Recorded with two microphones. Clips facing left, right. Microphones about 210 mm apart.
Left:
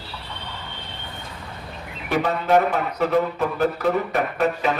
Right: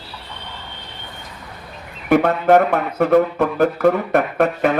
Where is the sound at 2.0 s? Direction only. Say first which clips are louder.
Right 7 dB; 55° right (ahead or behind).